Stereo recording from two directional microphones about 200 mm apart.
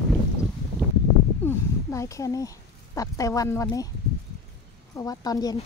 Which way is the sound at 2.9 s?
15° left (ahead or behind).